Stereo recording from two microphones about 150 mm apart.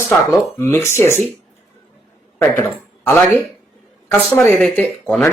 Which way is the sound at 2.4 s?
15° left (ahead or behind).